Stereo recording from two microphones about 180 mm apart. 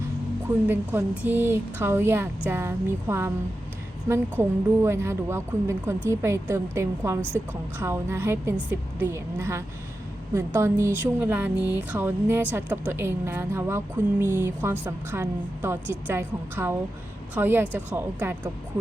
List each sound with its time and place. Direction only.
0.7 s speech: 10° right (ahead or behind)